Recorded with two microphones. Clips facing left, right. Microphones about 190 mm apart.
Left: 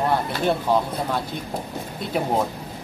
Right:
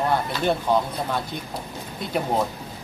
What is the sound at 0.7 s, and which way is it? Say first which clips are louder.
Speech: even; 5° left (ahead or behind).